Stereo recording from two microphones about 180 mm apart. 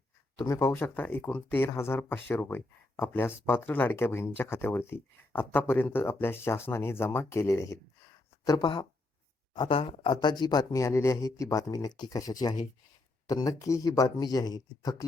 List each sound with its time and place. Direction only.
0.4 s speech: 15° left (ahead or behind)